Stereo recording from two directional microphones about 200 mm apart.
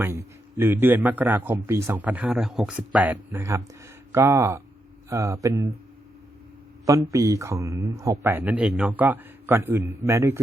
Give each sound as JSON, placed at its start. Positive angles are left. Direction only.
{"t": 0.0, "sound": "a man's voice", "side_deg": -15}
{"t": 6.8, "sound": "a man's voice", "side_deg": -15}